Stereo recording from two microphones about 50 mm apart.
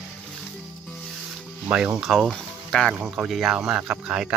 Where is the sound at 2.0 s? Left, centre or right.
Centre.